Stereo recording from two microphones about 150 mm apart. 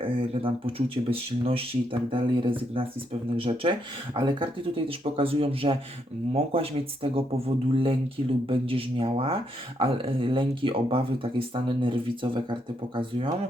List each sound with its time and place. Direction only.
0.0 s speech: 35° right (ahead or behind)